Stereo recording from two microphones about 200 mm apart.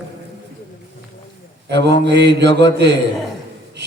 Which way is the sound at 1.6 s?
60° right (ahead or behind).